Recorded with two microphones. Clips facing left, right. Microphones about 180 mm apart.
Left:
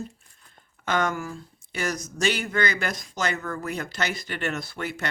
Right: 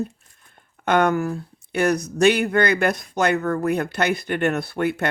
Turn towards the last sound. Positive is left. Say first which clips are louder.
# right 9 dB
turn(degrees=-55)  # may be behind; listen again after turning